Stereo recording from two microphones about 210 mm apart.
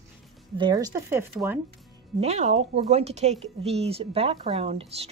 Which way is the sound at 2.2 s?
30° right (ahead or behind).